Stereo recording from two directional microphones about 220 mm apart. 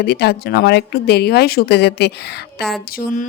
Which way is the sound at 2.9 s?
35° left (ahead or behind).